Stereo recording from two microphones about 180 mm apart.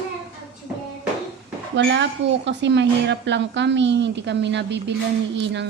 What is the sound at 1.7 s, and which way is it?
A woman's voice, 80° right.